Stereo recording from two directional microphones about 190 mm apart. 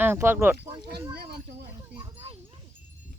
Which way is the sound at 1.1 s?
55° right (ahead or behind).